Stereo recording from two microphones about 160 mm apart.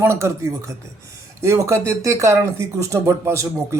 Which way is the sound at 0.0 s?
15° right (ahead or behind).